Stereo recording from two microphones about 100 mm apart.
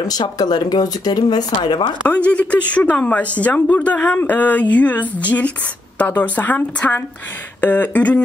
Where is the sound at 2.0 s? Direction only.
15° left (ahead or behind).